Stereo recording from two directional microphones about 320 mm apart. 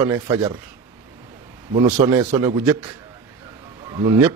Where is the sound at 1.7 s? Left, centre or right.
Centre.